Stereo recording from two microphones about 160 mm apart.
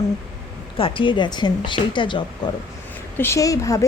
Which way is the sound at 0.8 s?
35° left (ahead or behind).